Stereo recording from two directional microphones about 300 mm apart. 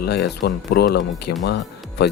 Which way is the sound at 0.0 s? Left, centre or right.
Left.